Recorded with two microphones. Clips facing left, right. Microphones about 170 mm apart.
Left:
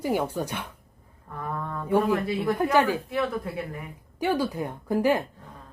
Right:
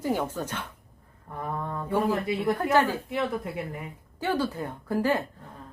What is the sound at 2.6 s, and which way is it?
Speech, 15° left (ahead or behind).